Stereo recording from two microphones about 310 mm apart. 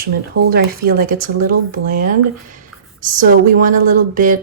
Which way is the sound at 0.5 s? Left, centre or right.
Right.